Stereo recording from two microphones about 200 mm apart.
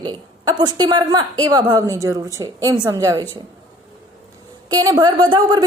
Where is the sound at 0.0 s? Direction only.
20° right (ahead or behind).